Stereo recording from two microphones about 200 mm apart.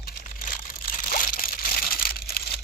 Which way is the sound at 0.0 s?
45° left (ahead or behind).